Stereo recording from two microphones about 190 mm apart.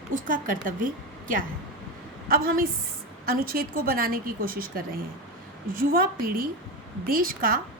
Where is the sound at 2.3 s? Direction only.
50° right (ahead or behind).